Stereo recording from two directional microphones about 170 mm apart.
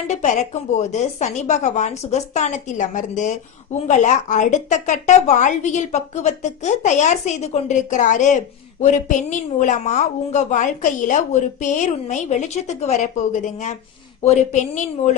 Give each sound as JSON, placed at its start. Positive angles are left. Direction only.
{"t": 0.1, "sound": "a woman's voice", "side_deg": 45}